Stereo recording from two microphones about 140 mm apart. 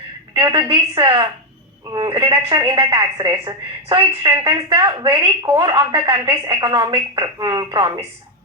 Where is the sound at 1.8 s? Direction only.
30° right (ahead or behind).